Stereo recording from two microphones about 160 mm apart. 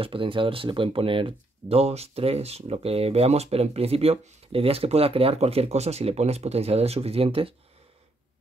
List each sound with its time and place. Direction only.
0.0 s speech: 35° right (ahead or behind)